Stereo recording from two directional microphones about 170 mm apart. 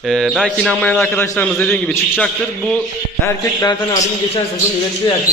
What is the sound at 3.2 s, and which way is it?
Speech, 20° left (ahead or behind).